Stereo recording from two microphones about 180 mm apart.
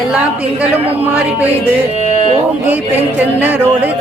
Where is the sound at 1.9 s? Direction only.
35° right (ahead or behind).